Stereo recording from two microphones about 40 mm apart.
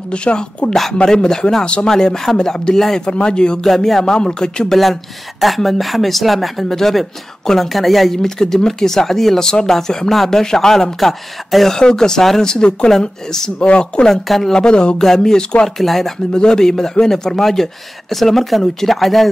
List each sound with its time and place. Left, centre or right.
0.1 s speech: left
3.1 s speech: left
3.6 s speech: centre
4.0 s speech: centre
4.6 s speech: centre; by 14.0 s left
14.2 s speech: centre
14.5 s speech: left
15.0 s speech: centre
15.8 s speech: centre